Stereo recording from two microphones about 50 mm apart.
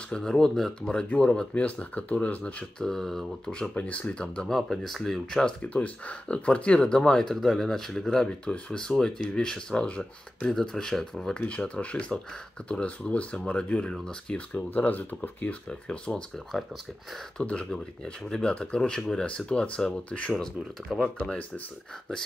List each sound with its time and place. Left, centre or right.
0.1 s speech: centre
1.5 s speech: left
2.8 s speech: centre
3.7 s speech: left
4.6 s speech: centre
5.6 s speech: left
10.5 s speech: centre
11.3 s speech: left
14.5 s speech: left
15.4 s speech: left
16.5 s speech: centre
17.4 s speech: left
20.9 s speech: centre